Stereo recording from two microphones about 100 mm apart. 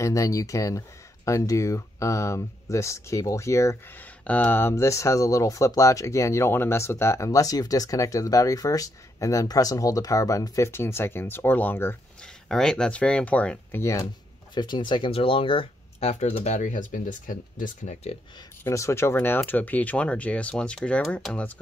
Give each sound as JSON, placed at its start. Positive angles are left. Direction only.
{"t": 0.0, "sound": "speech", "side_deg": 30}
{"t": 4.3, "sound": "speech", "side_deg": 15}
{"t": 12.4, "sound": "speech", "side_deg": 5}
{"t": 14.5, "sound": "speech", "side_deg": 50}
{"t": 18.6, "sound": "speech", "side_deg": 30}